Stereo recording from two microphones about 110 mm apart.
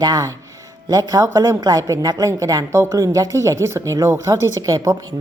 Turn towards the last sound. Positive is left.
turn(degrees=-30)  # may be behind; listen again after turning